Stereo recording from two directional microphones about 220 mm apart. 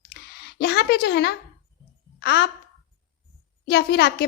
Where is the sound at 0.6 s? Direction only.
45° left (ahead or behind).